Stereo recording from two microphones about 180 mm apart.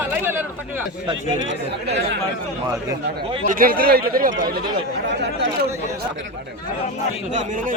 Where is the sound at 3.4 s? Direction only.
50° right (ahead or behind).